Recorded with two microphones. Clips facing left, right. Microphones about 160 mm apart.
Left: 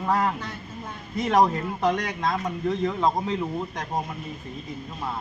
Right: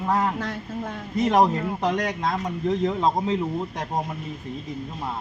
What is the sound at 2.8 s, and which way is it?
Speech, 25° right (ahead or behind).